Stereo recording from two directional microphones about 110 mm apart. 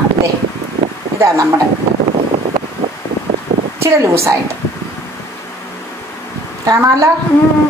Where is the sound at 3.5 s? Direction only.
90° right.